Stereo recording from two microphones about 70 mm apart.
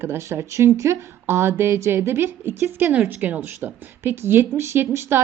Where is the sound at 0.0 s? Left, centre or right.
Right.